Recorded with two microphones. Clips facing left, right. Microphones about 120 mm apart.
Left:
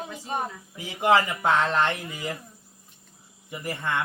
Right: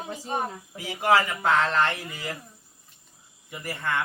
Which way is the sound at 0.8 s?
20° left (ahead or behind).